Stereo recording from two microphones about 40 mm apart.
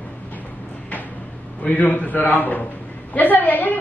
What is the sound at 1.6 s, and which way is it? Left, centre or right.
A man's voice, left.